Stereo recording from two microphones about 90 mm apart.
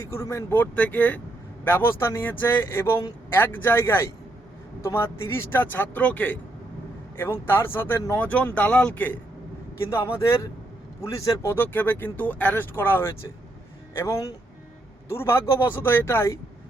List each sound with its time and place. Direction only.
0.0 s speech: 30° left (ahead or behind)
0.5 s speech: 20° left (ahead or behind)
9.8 s speech: 30° left (ahead or behind)
11.5 s speech: 20° left (ahead or behind)